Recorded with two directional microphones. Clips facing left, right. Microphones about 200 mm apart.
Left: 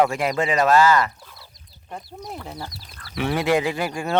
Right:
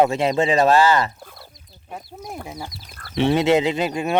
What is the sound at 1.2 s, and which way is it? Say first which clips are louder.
Frog: right 5 dB; 50° right (ahead or behind).